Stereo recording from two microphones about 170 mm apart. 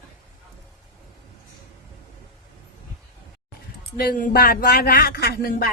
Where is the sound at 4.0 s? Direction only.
60° left (ahead or behind).